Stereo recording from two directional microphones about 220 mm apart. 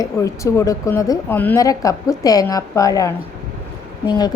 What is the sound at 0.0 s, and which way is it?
Speech, 15° left (ahead or behind).